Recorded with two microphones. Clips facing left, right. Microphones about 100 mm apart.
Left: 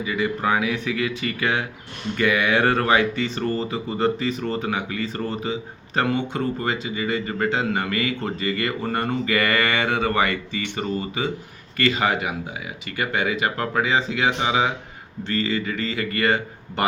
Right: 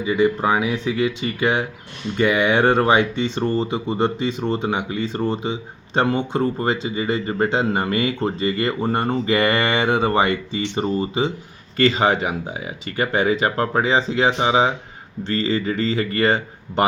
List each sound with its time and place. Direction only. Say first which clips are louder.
0.0 s speech: right 5 dB; 25° right (ahead or behind)